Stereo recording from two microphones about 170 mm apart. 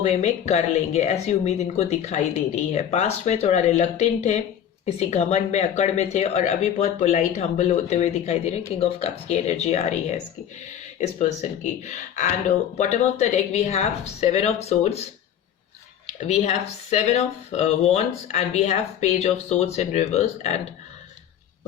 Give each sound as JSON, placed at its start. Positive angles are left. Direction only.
{"t": 0.0, "sound": "speech", "side_deg": 40}
{"t": 16.2, "sound": "speech", "side_deg": 40}